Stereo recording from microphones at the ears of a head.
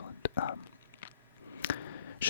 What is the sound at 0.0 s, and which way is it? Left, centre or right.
Whispering, left.